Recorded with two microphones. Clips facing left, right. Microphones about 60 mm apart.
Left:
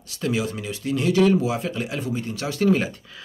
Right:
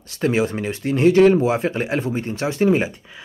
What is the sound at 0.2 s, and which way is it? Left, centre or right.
Speech, right.